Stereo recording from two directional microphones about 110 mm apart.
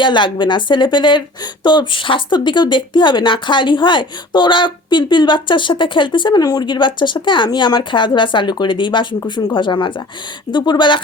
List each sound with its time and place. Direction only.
0.0 s speech: 45° left (ahead or behind)